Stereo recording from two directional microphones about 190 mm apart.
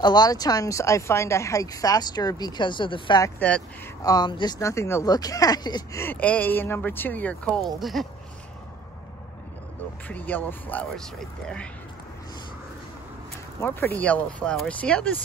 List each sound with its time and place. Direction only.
0.0 s speech: 20° left (ahead or behind)
3.3 s speech: 5° left (ahead or behind)
4.0 s speech: 20° left (ahead or behind); by 8.1 s centre (ahead or behind)
10.0 s speech: 10° left (ahead or behind)
13.6 s speech: 10° left (ahead or behind)